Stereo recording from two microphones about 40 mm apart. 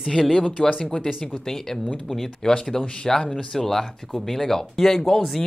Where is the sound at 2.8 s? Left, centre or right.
Left.